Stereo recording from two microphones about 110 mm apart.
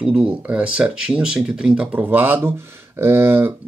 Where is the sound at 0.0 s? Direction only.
10° right (ahead or behind).